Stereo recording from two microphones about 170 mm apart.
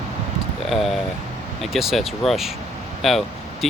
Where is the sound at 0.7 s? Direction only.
Centre (ahead or behind).